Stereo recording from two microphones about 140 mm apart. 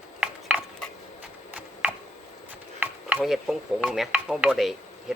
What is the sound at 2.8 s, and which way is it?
Chopping, 15° right (ahead or behind).